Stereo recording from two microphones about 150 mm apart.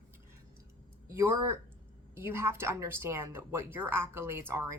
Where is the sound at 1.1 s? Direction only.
20° right (ahead or behind).